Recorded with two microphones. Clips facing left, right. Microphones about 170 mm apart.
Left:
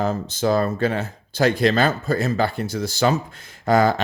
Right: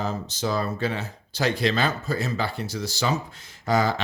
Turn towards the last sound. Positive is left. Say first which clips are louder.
# left 5 dB
turn(degrees=55)  # may be behind; listen again after turning